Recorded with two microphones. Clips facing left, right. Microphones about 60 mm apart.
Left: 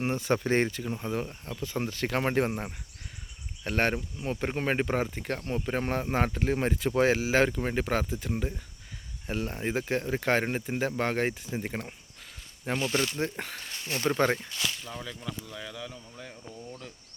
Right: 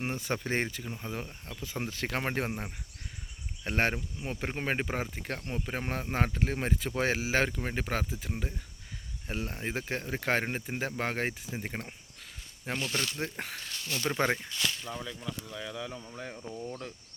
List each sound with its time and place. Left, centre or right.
0.0 s speech: centre
1.6 s speech: centre
2.1 s speech: centre
3.7 s speech: centre
3.9 s speech: centre
13.1 s speech: centre
13.6 s speech: left
14.2 s speech: centre
14.5 s a sound: centre
14.8 s speech: centre
16.0 s speech: right